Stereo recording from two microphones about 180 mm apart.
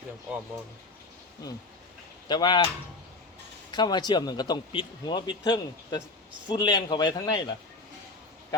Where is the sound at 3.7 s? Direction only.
25° left (ahead or behind).